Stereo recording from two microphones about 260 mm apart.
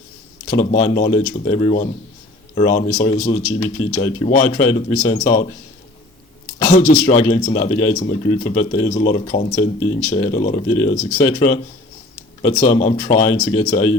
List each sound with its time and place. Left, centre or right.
0.5 s speech: left
6.7 s speech: left